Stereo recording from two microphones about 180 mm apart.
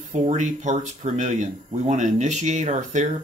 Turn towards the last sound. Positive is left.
turn(degrees=-45)  # may be behind; listen again after turning